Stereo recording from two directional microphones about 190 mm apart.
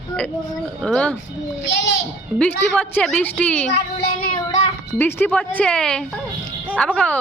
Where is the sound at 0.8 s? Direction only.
5° left (ahead or behind).